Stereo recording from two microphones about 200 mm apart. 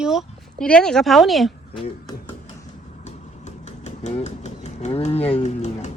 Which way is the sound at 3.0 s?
35° left (ahead or behind).